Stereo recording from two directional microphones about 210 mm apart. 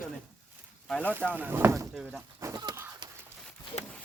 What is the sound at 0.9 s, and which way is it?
Speech, 5° left (ahead or behind).